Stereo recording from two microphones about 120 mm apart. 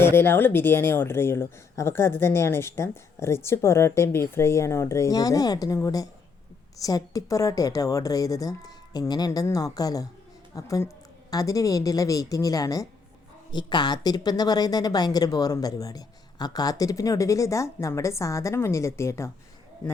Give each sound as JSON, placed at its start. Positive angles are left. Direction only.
{"t": 0.0, "sound": "a woman's voice", "side_deg": 20}